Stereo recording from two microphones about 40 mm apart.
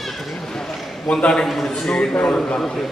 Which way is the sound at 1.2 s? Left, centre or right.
Centre.